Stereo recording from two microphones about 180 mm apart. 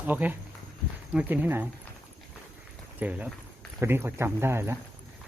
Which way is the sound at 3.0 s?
10° right (ahead or behind).